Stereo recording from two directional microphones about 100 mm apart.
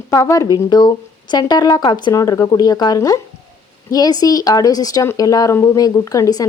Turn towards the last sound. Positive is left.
turn(degrees=35)  # may be behind; listen again after turning